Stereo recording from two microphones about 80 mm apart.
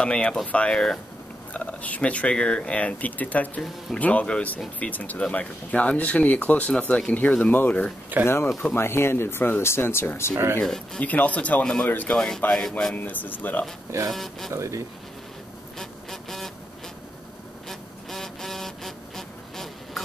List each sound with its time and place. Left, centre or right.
0.0 s speech: centre
8.1 s speech: right
8.7 s speech: left
10.3 s speech: right
10.6 s speech: centre
11.1 s speech: centre
14.1 s speech: centre
14.5 s speech: right
15.8 s vehicle: centre
17.6 s vehicle: centre